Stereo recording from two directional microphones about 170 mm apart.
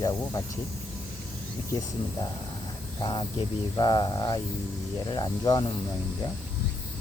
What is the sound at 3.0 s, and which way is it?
Speech, 30° left (ahead or behind).